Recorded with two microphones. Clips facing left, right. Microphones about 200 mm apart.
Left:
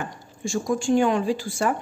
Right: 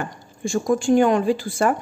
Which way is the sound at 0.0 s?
55° right (ahead or behind).